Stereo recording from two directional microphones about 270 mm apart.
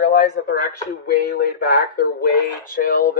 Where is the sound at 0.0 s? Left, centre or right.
Left.